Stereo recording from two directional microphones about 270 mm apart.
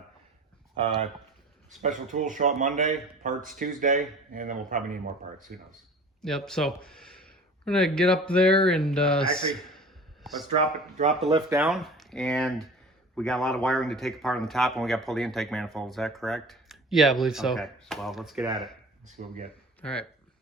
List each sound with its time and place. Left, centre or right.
1.8 s speech: right
6.2 s speech: centre
9.5 s a sound: centre
10.5 s speech: right
11.3 s speech: centre
11.6 s speech: centre
19.2 s speech: right
19.8 s speech: centre